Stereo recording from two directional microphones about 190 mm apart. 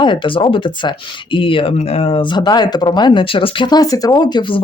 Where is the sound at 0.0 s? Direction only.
25° left (ahead or behind).